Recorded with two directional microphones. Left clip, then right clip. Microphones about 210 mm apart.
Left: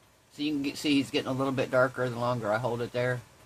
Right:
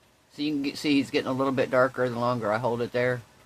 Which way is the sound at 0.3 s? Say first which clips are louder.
Right 2 dB; 20° right (ahead or behind).